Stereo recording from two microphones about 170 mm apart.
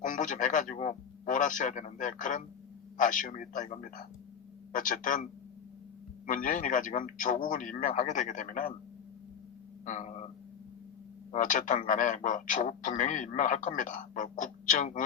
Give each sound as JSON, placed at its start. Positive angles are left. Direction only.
{"t": 0.0, "sound": "a man's voice", "side_deg": 50}
{"t": 4.7, "sound": "a man's voice", "side_deg": 50}
{"t": 6.2, "sound": "a man's voice", "side_deg": 50}
{"t": 9.8, "sound": "a man's voice", "side_deg": 45}
{"t": 11.3, "sound": "a man's voice", "side_deg": 50}